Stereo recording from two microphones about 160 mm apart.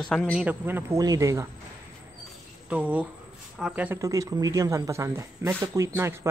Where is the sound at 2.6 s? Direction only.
10° right (ahead or behind).